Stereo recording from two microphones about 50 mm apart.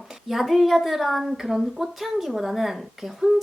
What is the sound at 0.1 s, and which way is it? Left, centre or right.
A woman's voice, centre.